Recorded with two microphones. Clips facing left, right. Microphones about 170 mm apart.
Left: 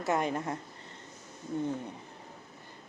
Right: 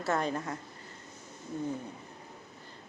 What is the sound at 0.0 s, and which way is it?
Speech, 15° left (ahead or behind).